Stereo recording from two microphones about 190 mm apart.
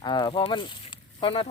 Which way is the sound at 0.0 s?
20° left (ahead or behind).